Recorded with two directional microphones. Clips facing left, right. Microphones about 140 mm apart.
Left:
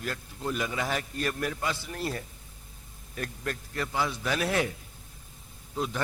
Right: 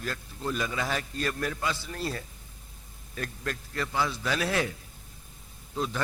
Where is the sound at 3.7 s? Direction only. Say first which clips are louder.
Right 1 dB; 25° left (ahead or behind).